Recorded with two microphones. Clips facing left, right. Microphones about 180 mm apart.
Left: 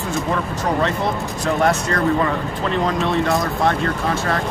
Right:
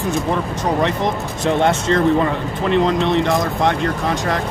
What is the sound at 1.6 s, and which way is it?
Speech, 25° right (ahead or behind).